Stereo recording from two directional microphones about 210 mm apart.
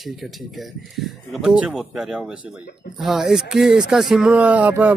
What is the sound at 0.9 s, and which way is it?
Speech, centre (ahead or behind).